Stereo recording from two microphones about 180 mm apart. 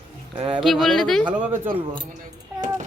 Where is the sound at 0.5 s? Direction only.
Centre (ahead or behind).